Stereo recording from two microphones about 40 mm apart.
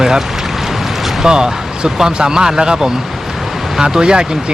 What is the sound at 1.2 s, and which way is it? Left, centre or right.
Speech, centre.